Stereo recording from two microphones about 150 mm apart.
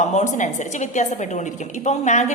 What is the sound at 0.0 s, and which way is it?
A woman's voice, 50° left (ahead or behind).